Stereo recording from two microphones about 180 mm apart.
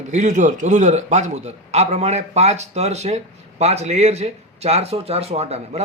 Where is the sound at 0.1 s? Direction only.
40° right (ahead or behind).